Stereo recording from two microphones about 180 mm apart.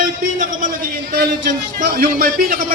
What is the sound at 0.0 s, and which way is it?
Speech, 50° right (ahead or behind).